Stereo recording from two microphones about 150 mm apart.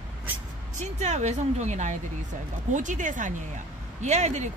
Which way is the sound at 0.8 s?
50° right (ahead or behind).